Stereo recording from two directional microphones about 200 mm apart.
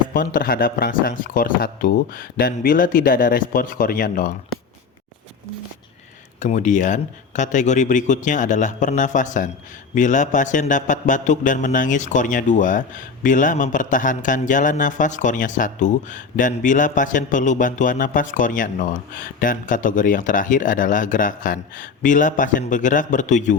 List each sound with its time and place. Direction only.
0.1 s speech: 45° left (ahead or behind)
6.4 s speech: 40° left (ahead or behind)